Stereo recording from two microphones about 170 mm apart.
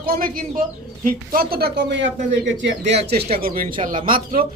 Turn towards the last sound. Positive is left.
turn(degrees=-55)  # may be behind; listen again after turning